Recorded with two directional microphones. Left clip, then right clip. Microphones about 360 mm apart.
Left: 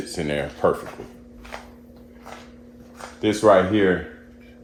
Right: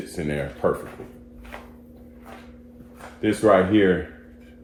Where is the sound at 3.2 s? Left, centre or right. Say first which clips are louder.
Left 2 dB; centre.